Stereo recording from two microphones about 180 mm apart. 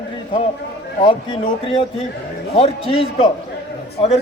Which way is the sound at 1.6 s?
30° left (ahead or behind).